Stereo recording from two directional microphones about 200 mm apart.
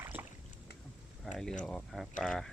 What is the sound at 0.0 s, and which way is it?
Boat, 10° right (ahead or behind).